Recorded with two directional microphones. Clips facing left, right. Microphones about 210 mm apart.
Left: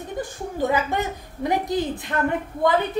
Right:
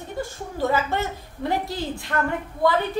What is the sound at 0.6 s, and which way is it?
A woman's voice, 15° left (ahead or behind).